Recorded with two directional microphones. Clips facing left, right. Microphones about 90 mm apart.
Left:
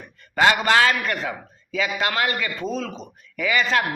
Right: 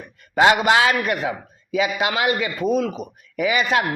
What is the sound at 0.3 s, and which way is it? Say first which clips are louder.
A man's voice: right 2 dB; 20° right (ahead or behind).